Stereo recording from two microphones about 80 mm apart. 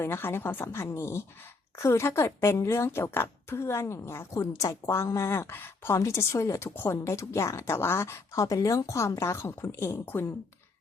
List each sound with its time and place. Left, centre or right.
0.0 s a woman's voice: left
8.4 s a woman's voice: left